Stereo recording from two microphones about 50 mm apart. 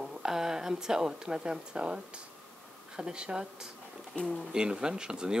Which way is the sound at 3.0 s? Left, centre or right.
Centre.